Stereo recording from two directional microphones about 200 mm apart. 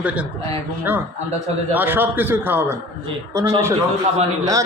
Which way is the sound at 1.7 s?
10° right (ahead or behind).